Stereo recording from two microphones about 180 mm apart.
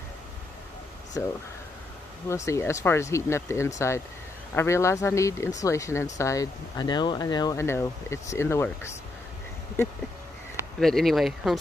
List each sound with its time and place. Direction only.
1.1 s speech: 15° left (ahead or behind)
10.8 s speech: centre (ahead or behind)